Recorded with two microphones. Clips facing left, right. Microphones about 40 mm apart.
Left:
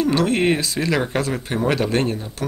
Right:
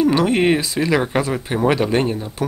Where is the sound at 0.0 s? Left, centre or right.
Centre.